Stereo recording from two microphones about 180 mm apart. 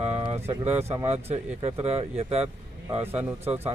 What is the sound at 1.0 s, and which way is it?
Speech, 35° right (ahead or behind).